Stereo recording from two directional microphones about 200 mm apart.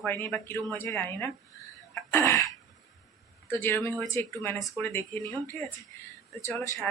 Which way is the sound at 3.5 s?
10° left (ahead or behind).